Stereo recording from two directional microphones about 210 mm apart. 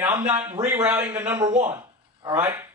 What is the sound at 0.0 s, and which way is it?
Speech, 10° right (ahead or behind).